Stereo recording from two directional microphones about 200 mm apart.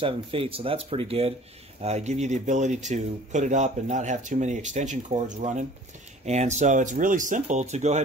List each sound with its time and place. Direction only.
0.0 s a man's voice: 25° right (ahead or behind)